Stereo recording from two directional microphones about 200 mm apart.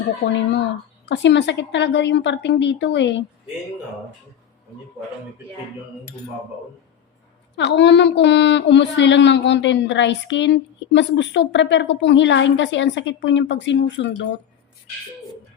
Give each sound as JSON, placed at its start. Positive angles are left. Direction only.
{"t": 1.0, "sound": "a woman's voice", "side_deg": 60}
{"t": 7.5, "sound": "a woman's voice", "side_deg": 60}